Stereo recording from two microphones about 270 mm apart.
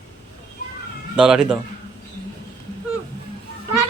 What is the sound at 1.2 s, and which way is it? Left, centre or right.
Speech, centre.